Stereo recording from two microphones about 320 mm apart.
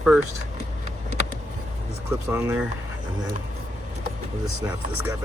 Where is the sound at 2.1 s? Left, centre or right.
Centre.